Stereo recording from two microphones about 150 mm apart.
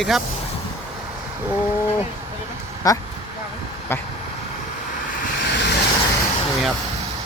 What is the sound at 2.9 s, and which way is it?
Speech, 25° left (ahead or behind).